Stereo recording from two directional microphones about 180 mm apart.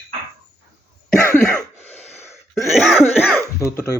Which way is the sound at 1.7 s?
35° left (ahead or behind).